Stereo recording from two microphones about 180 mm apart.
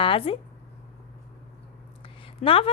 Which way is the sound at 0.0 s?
30° left (ahead or behind).